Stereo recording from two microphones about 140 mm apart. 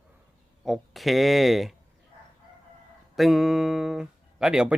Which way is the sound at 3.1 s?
Centre (ahead or behind).